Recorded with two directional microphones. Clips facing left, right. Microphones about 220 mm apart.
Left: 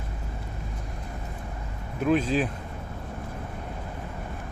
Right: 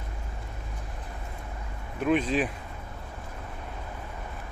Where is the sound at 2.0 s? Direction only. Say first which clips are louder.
Left 1 dB; centre (ahead or behind).